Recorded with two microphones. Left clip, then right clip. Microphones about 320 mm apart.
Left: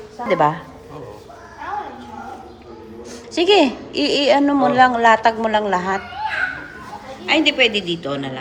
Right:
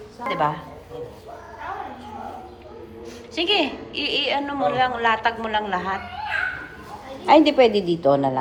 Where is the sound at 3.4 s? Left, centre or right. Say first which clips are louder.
Left 7 dB; left.